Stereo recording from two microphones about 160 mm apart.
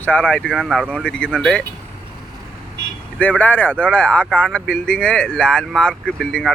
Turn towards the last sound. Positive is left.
turn(degrees=5)  # may be behind; listen again after turning